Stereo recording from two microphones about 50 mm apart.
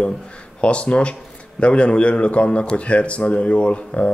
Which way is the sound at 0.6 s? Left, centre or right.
Left.